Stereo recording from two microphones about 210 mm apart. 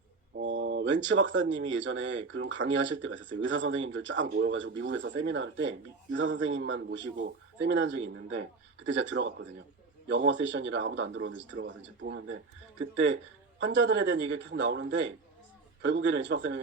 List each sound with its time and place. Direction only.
0.3 s a sound: 65° right (ahead or behind)
1.0 s speech: 65° right (ahead or behind)
8.4 s speech: 65° right (ahead or behind)
13.6 s a man's voice: 65° right (ahead or behind)